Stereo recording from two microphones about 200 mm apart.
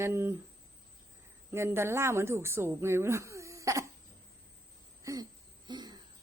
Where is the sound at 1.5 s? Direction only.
15° right (ahead or behind).